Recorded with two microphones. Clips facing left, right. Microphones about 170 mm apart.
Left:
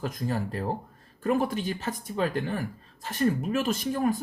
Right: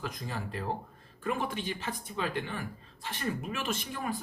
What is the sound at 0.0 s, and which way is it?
Speech, 45° left (ahead or behind).